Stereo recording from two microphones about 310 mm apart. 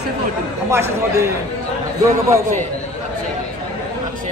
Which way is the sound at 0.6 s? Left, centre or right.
Centre.